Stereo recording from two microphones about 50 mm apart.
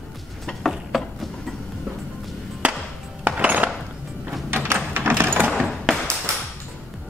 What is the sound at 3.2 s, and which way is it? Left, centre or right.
Dishes, right.